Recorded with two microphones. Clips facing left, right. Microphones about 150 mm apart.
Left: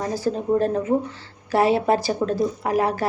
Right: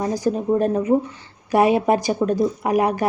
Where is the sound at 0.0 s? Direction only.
15° right (ahead or behind).